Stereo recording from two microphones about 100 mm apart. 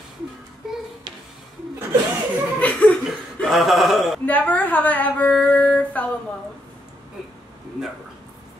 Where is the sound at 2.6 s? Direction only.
15° left (ahead or behind).